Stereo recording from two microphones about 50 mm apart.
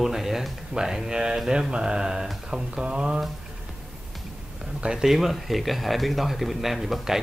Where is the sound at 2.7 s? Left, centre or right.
Centre.